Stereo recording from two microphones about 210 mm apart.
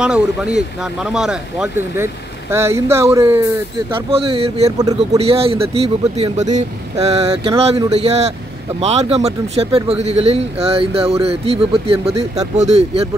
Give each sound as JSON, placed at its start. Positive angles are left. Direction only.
{"t": 0.0, "sound": "speech", "side_deg": -5}
{"t": 4.1, "sound": "speech", "side_deg": -25}